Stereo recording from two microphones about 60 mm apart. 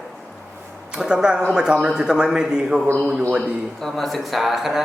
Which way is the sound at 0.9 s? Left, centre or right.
Centre.